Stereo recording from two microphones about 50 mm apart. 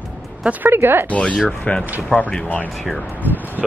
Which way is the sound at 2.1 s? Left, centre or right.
Left.